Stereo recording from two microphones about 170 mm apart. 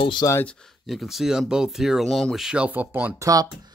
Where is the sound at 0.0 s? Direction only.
25° left (ahead or behind).